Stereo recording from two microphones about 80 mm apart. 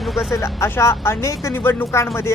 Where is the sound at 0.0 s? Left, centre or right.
Centre.